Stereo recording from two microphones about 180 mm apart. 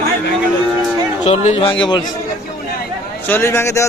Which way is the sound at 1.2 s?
40° left (ahead or behind).